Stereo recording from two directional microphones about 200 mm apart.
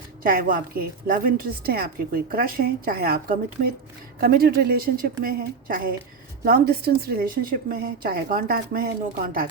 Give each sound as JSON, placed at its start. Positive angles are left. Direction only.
{"t": 0.2, "sound": "a woman's voice", "side_deg": -45}